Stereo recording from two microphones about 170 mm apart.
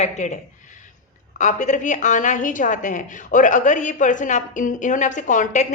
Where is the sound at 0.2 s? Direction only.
45° left (ahead or behind).